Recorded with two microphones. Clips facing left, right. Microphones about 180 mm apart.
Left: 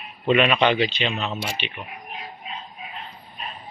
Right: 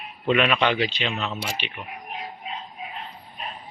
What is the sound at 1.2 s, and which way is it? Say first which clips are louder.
Speech: left 1 dB; 25° left (ahead or behind).